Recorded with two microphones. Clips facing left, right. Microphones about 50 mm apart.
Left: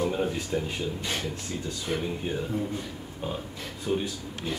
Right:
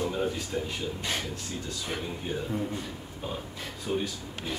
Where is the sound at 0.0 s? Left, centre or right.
Centre.